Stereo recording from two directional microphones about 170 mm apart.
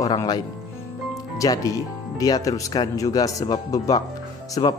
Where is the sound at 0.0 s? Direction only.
25° left (ahead or behind).